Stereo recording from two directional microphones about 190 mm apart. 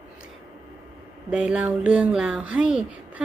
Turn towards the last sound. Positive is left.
turn(degrees=-5)  # may be behind; listen again after turning